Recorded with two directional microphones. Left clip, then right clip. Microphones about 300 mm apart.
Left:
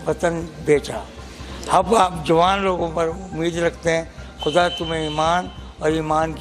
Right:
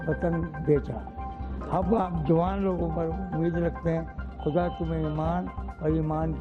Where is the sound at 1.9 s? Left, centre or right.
Centre.